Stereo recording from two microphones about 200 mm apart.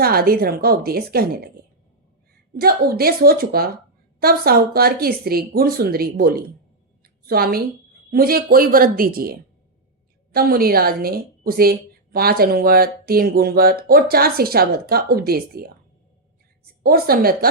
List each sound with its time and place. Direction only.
0.0 s a woman's voice: 50° right (ahead or behind)
2.6 s a woman's voice: 50° right (ahead or behind)
7.0 s a sound: 50° right (ahead or behind)
8.1 s a woman's voice: 50° right (ahead or behind)
16.8 s a woman's voice: 50° right (ahead or behind)